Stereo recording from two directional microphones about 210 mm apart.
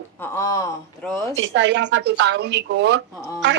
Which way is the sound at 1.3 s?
65° right (ahead or behind).